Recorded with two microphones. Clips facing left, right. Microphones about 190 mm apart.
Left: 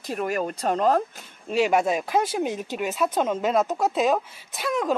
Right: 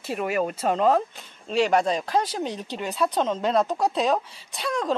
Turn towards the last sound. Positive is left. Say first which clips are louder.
# left 1 dB
turn(degrees=5)  # may be behind; listen again after turning